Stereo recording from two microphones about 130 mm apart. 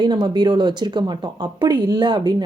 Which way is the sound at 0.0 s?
35° right (ahead or behind).